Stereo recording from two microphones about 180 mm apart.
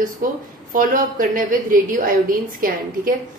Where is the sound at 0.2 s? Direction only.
50° right (ahead or behind).